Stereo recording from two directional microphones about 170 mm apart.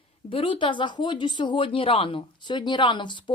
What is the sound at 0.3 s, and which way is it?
Speech, 30° left (ahead or behind).